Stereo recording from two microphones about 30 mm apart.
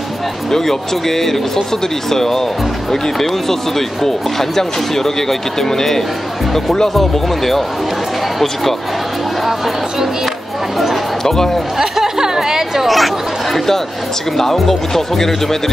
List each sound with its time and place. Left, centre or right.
0.5 s speech: centre
6.9 s speech: centre
9.4 s music: centre
11.2 s speech: centre
11.8 s a sound: centre
12.8 s chatter: centre
14.3 s speech: centre